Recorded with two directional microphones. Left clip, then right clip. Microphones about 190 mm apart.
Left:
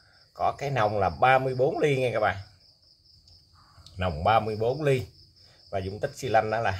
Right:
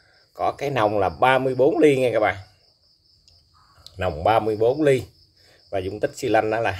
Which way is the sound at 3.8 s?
30° right (ahead or behind).